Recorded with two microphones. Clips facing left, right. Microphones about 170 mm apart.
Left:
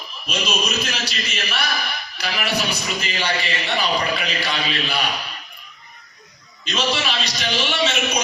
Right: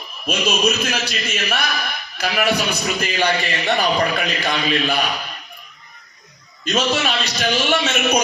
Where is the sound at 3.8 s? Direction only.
50° right (ahead or behind).